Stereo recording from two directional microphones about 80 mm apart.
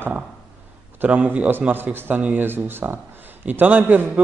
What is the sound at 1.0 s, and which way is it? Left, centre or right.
A man's voice, centre.